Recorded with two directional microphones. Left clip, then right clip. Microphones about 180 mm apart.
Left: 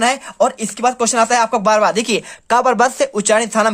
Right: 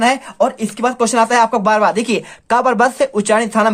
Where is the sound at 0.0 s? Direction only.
25° left (ahead or behind).